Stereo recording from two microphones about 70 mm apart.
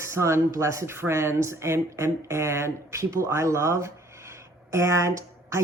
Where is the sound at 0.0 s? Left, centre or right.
Right.